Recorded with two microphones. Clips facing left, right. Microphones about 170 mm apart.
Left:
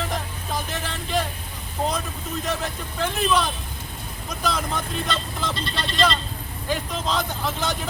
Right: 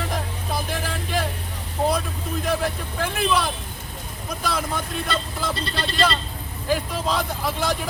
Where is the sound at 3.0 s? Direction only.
5° right (ahead or behind).